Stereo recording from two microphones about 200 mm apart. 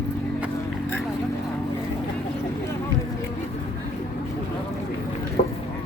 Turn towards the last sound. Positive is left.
turn(degrees=30)  # may be behind; listen again after turning